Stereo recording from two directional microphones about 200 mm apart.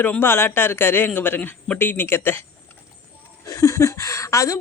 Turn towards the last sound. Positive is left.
turn(degrees=15)  # may be behind; listen again after turning